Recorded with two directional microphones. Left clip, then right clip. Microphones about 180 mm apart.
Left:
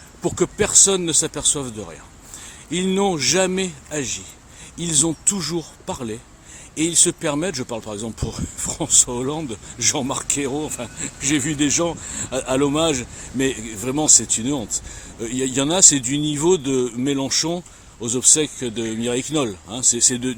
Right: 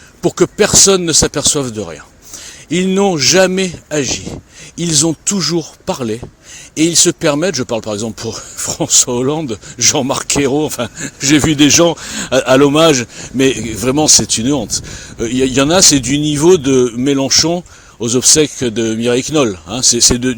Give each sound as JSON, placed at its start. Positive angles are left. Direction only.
{"t": 0.2, "sound": "speech", "side_deg": -30}